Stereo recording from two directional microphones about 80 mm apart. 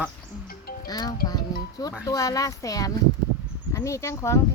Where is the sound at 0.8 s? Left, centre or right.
Left.